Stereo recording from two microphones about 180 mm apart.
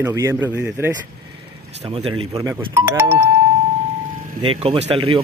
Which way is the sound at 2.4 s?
15° right (ahead or behind).